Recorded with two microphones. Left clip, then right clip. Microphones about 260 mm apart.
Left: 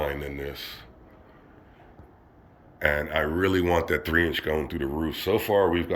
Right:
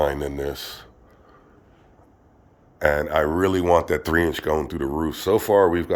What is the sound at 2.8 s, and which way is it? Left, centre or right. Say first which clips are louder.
Speech: right 5 dB; right.